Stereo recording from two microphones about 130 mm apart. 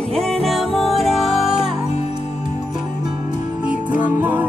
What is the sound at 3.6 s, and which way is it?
Music, 10° right (ahead or behind).